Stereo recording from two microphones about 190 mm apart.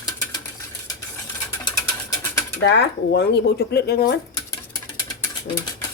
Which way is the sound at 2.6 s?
60° left (ahead or behind).